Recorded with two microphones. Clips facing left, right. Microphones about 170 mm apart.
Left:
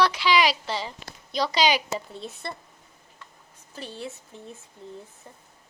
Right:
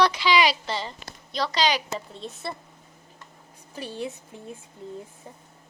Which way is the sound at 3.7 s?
15° right (ahead or behind).